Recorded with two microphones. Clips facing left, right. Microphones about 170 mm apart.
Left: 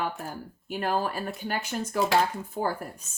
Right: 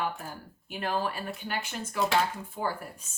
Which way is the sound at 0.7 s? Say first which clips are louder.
Left 3 dB; 45° left (ahead or behind).